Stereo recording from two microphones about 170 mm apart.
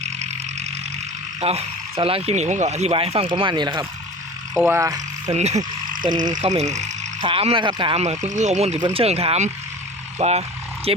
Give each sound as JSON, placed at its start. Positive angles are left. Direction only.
{"t": 1.4, "sound": "speech", "side_deg": -35}
{"t": 4.5, "sound": "speech", "side_deg": -15}
{"t": 5.3, "sound": "frog", "side_deg": -40}
{"t": 7.3, "sound": "speech", "side_deg": -30}